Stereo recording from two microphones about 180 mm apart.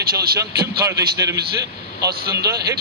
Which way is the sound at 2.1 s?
60° right (ahead or behind).